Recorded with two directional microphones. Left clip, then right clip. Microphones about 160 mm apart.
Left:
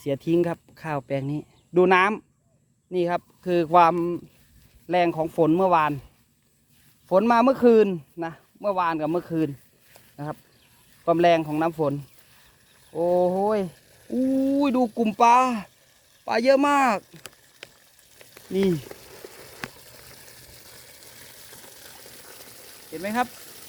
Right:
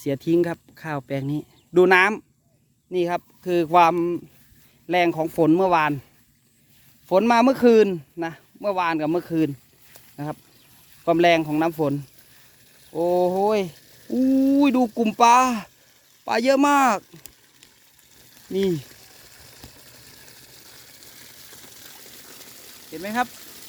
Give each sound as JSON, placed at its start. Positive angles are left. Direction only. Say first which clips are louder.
{"t": 0.0, "sound": "a man's voice", "louder": "right 2 dB", "side_deg": -20}
{"t": 7.1, "sound": "a man's voice", "louder": "right 1 dB", "side_deg": -30}
{"t": 11.0, "sound": "a man's voice", "louder": "right 1 dB", "side_deg": -25}
{"t": 13.2, "sound": "a man's voice", "louder": "right 2 dB", "side_deg": -55}
{"t": 17.0, "sound": "speech", "louder": "right 1 dB", "side_deg": 5}
{"t": 18.7, "sound": "a sound", "louder": "right 1 dB", "side_deg": 10}